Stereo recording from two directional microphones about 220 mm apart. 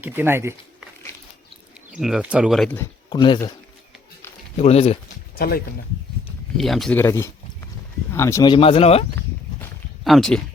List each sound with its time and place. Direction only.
0.0 s speech: 10° right (ahead or behind)
2.0 s speech: centre (ahead or behind)
2.7 s speech: 20° left (ahead or behind)
4.5 s speech: 30° left (ahead or behind)
5.4 s speech: 45° left (ahead or behind)
6.6 s speech: centre (ahead or behind); by 9.0 s 25° left (ahead or behind)
10.0 s speech: centre (ahead or behind)